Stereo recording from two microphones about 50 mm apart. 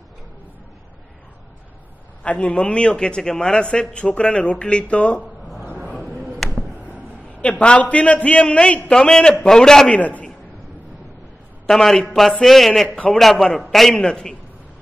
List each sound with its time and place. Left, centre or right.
2.2 s a man's voice: left
5.6 s a sound: right
6.1 s a sound: centre
7.4 s a man's voice: left
9.8 s a man's voice: left
11.7 s a man's voice: centre